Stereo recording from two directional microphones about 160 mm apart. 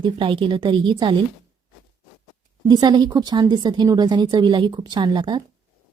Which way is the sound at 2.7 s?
25° right (ahead or behind).